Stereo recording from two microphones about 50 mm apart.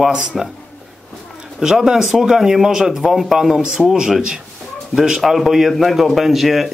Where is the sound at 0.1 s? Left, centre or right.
Centre.